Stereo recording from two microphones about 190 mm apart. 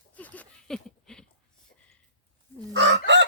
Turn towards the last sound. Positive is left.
turn(degrees=-70)  # may be behind; listen again after turning